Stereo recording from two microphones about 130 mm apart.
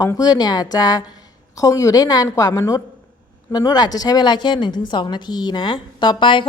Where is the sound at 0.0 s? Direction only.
25° left (ahead or behind).